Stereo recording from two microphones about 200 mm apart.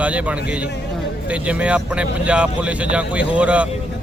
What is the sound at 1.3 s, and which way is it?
Speech, 5° right (ahead or behind).